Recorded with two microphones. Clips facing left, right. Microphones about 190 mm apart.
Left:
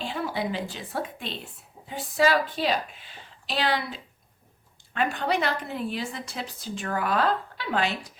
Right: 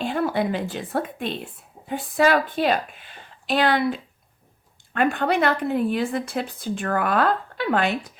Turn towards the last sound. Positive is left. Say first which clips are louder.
# right 5 dB
turn(degrees=-55)  # may be behind; listen again after turning